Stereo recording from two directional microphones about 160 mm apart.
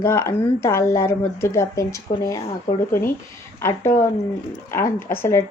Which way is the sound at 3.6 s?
15° left (ahead or behind).